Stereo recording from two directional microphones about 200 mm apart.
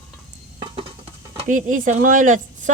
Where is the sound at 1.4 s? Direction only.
40° right (ahead or behind).